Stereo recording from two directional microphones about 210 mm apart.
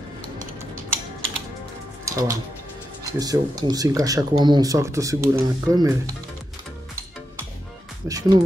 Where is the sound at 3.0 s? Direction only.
15° right (ahead or behind).